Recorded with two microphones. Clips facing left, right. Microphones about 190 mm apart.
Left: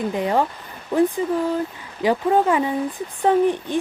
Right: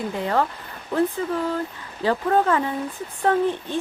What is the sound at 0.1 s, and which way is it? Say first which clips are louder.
Speech: even; 15° left (ahead or behind).